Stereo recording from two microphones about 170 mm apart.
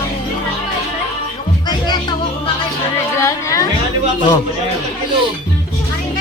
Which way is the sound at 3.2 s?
20° left (ahead or behind).